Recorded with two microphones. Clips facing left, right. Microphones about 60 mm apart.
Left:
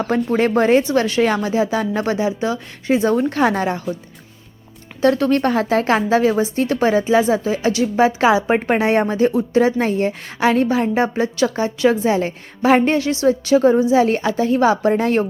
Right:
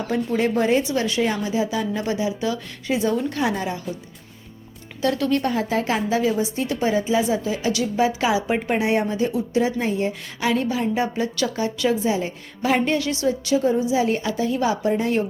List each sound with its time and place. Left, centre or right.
0.0 s a woman's voice: left
4.9 s speech: left
5.4 s a woman's voice: left
7.3 s a woman's voice: left
12.0 s a woman's voice: left
12.6 s a woman's voice: left
13.9 s a woman's voice: left